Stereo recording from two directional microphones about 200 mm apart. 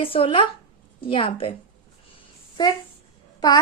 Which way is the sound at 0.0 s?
30° left (ahead or behind).